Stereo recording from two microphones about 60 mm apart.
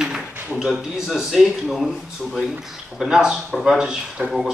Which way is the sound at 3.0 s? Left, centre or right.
Centre.